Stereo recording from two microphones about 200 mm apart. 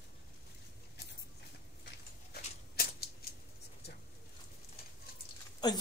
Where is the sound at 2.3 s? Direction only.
50° left (ahead or behind).